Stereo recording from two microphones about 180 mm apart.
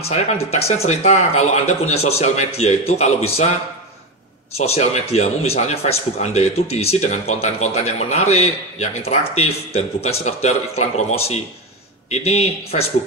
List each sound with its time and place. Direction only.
0.1 s a man's voice: 35° left (ahead or behind)
4.6 s a man's voice: 35° left (ahead or behind)